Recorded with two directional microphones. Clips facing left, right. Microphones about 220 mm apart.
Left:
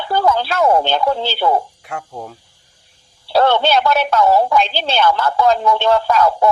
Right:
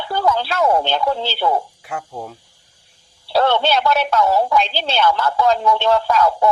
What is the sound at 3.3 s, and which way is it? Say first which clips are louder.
Speech: left 2 dB; 50° left (ahead or behind).